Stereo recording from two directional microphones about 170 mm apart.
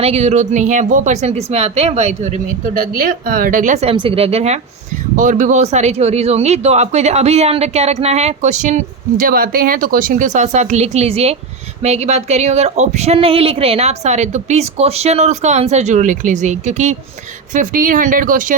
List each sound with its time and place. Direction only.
0.0 s a woman's voice: 40° right (ahead or behind)
3.9 s speech: 30° right (ahead or behind)
5.1 s a woman's voice: 50° right (ahead or behind)